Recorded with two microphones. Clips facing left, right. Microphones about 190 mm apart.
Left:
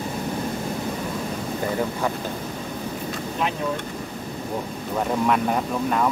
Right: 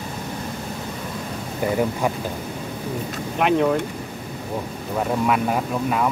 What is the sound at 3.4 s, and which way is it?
Speech, 65° right (ahead or behind).